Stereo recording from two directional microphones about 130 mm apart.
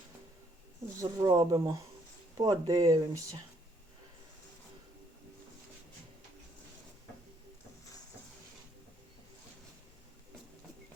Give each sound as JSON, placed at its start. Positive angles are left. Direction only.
{"t": 0.9, "sound": "speech", "side_deg": -25}